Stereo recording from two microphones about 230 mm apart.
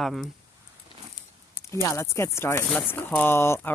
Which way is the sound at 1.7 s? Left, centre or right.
Centre.